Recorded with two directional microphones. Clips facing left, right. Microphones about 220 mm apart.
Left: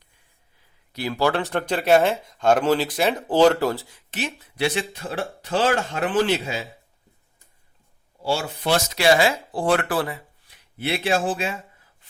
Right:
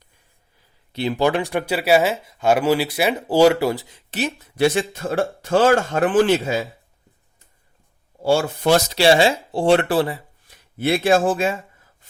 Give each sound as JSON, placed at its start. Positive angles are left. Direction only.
{"t": 0.9, "sound": "speech", "side_deg": -20}
{"t": 4.1, "sound": "speech", "side_deg": -40}
{"t": 8.2, "sound": "speech", "side_deg": -50}
{"t": 8.9, "sound": "speech", "side_deg": -30}
{"t": 10.5, "sound": "speech", "side_deg": -45}